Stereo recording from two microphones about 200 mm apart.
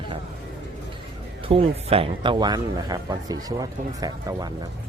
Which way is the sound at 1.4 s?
25° right (ahead or behind).